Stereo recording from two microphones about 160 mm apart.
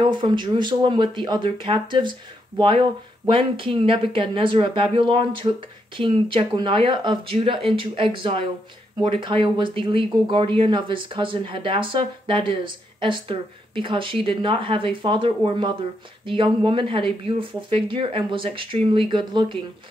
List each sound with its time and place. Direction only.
0.0 s speech: 30° right (ahead or behind)